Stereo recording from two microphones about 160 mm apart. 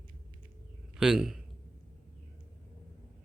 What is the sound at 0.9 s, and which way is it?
Speech, 5° right (ahead or behind).